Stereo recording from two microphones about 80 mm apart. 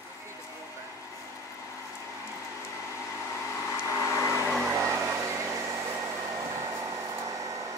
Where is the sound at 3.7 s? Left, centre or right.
Left.